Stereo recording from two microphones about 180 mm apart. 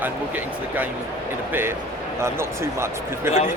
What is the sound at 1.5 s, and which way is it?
Speech, 10° right (ahead or behind).